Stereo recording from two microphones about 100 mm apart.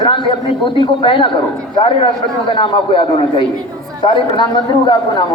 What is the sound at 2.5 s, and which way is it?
Speech, 60° left (ahead or behind).